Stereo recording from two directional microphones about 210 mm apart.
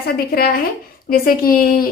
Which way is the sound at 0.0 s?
45° left (ahead or behind).